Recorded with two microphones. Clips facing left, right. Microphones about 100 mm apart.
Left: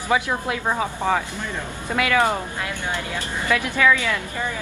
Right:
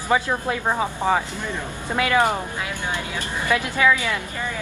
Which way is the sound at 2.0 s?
20° right (ahead or behind).